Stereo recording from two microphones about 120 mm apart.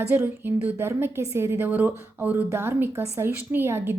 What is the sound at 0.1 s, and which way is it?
A woman's voice, 20° right (ahead or behind).